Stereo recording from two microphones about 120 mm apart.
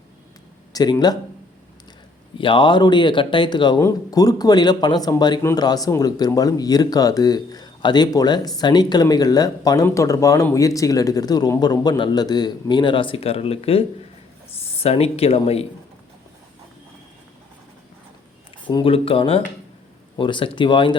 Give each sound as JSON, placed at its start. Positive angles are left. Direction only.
{"t": 0.7, "sound": "speech", "side_deg": 35}
{"t": 2.4, "sound": "speech", "side_deg": 45}
{"t": 3.8, "sound": "speech", "side_deg": 25}
{"t": 18.7, "sound": "speech", "side_deg": 45}